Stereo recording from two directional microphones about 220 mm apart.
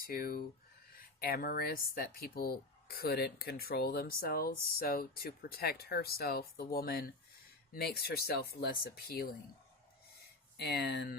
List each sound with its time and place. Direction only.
0.0 s speech: 40° left (ahead or behind)
10.6 s speech: 45° left (ahead or behind)